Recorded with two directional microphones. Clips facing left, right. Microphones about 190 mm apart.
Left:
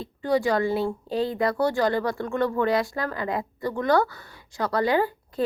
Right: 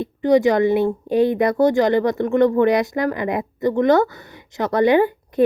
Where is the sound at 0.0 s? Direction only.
20° right (ahead or behind).